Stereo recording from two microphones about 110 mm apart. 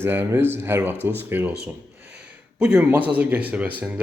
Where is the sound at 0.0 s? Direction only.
20° right (ahead or behind).